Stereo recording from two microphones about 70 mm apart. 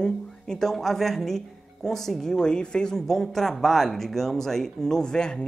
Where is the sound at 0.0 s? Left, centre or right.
Centre.